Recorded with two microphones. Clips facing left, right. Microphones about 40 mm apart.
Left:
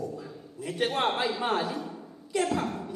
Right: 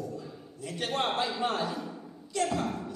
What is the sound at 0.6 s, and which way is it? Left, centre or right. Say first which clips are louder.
A man's voice: left 4 dB; centre.